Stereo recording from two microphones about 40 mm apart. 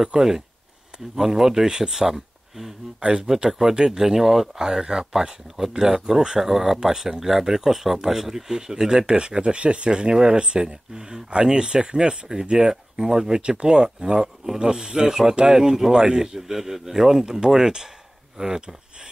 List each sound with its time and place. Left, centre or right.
0.0 s speech: centre
3.0 s speech: right
3.4 s speech: centre
16.3 s speech: centre